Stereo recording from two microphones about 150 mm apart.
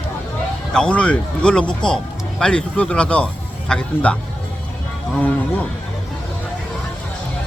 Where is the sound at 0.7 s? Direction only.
5° left (ahead or behind).